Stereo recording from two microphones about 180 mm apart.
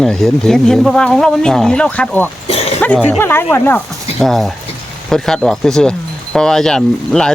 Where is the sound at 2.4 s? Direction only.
35° left (ahead or behind).